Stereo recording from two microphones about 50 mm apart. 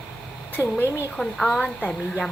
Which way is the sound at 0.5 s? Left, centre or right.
Left.